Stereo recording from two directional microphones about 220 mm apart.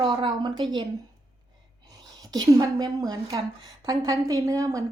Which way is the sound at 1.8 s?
15° right (ahead or behind).